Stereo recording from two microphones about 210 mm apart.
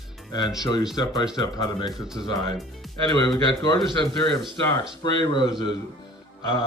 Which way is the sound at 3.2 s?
20° left (ahead or behind).